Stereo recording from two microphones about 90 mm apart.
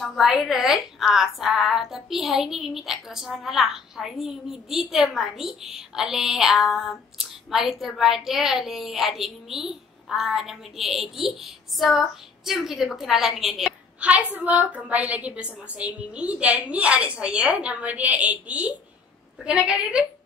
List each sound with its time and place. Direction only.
0.0 s a woman's voice: centre (ahead or behind)
13.9 s a woman's voice: 15° right (ahead or behind)